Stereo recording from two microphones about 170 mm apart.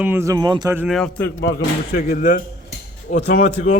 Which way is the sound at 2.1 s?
55° left (ahead or behind).